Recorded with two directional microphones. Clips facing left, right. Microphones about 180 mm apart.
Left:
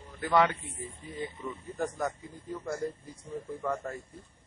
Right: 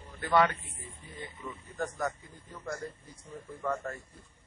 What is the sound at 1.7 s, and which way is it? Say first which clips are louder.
Speech: left 1 dB; 15° left (ahead or behind).